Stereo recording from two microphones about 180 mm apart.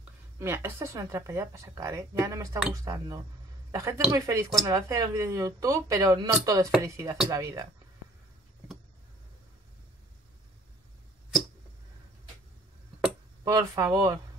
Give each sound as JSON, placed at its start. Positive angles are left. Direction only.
{"t": 0.4, "sound": "speech", "side_deg": -15}
{"t": 13.4, "sound": "speech", "side_deg": -20}